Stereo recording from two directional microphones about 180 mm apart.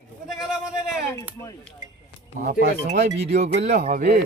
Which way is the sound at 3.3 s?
40° right (ahead or behind).